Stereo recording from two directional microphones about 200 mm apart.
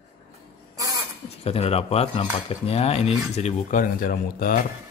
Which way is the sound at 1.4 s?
30° left (ahead or behind).